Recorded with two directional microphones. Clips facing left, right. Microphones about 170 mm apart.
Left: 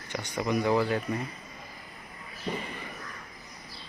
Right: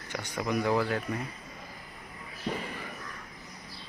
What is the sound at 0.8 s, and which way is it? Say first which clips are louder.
Speech: left 2 dB; 5° left (ahead or behind).